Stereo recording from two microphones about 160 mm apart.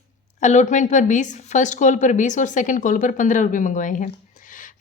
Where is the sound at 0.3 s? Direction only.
50° left (ahead or behind).